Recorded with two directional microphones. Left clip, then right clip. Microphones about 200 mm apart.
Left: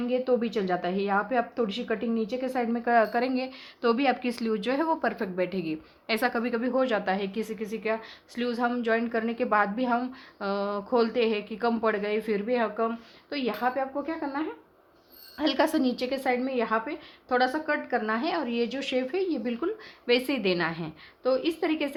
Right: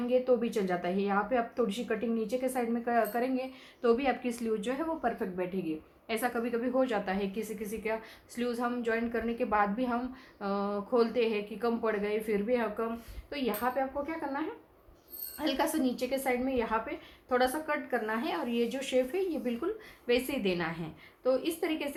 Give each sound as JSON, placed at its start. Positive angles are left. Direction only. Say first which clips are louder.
{"t": 0.1, "sound": "a woman's voice", "louder": "left 1 dB", "side_deg": 35}